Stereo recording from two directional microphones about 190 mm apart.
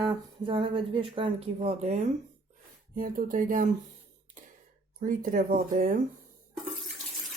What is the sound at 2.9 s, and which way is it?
Speech, 50° right (ahead or behind).